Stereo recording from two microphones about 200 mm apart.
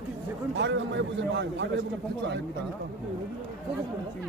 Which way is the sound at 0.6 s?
65° right (ahead or behind).